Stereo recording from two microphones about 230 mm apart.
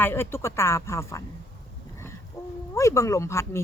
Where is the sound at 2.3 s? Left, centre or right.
Centre.